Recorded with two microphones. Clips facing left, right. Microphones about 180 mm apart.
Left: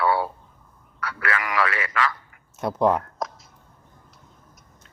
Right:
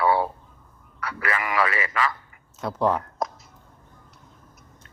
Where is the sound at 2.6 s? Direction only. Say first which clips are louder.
Left 3 dB; 20° left (ahead or behind).